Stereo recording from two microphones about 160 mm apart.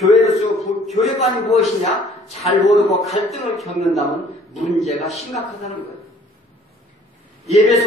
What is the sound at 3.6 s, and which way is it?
Speech, 40° left (ahead or behind).